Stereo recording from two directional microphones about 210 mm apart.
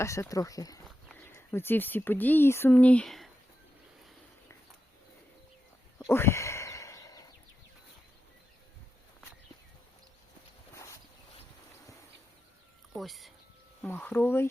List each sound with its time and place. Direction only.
0.0 s speech: 15° left (ahead or behind)
0.9 s walk: centre (ahead or behind)
1.2 s speech: 10° left (ahead or behind)
6.0 s a sound: 10° left (ahead or behind)
10.8 s boat: 15° left (ahead or behind)
13.0 s a sound: centre (ahead or behind)
13.8 s speech: 10° left (ahead or behind)